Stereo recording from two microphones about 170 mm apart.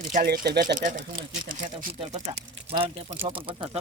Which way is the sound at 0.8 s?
50° right (ahead or behind).